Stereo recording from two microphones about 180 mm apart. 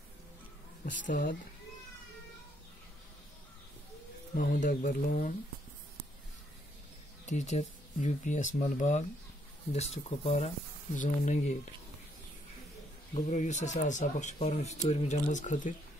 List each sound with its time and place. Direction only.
0.8 s speech: 45° left (ahead or behind)
4.4 s speech: 45° left (ahead or behind)
7.2 s speech: 40° left (ahead or behind)
13.1 s speech: 40° left (ahead or behind)